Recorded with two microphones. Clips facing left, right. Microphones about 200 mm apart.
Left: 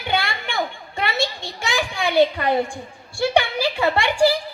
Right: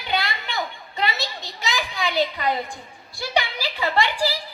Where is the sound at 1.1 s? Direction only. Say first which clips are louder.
Left 7 dB; 25° left (ahead or behind).